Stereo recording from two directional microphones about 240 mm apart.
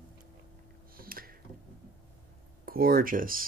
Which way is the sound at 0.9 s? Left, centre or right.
Right.